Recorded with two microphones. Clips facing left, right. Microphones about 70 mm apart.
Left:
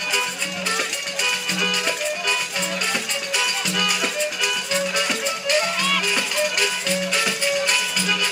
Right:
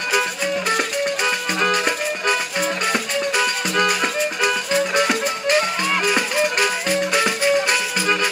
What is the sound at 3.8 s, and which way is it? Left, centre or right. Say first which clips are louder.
Music: right 4 dB; right.